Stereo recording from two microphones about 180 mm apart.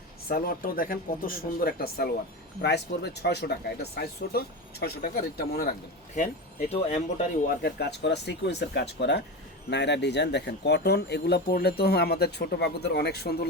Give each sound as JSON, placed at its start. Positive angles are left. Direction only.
{"t": 0.3, "sound": "speech", "side_deg": 55}
{"t": 6.7, "sound": "speech", "side_deg": 40}